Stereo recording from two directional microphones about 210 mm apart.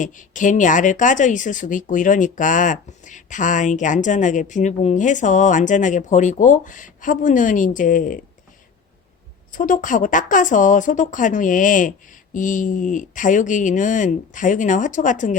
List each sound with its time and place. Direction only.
0.0 s speech: 40° left (ahead or behind)
9.5 s speech: 40° left (ahead or behind)